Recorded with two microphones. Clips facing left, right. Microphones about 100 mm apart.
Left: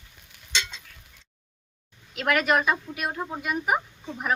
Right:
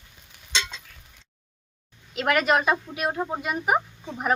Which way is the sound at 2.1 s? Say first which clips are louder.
Right 1 dB; 25° right (ahead or behind).